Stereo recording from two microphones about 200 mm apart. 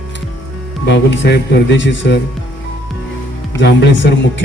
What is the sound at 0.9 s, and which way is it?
Speech, 60° left (ahead or behind).